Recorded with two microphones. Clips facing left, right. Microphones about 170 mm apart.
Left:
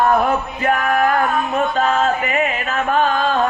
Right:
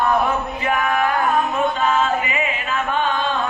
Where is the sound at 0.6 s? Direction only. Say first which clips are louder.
Left 3 dB; 50° left (ahead or behind).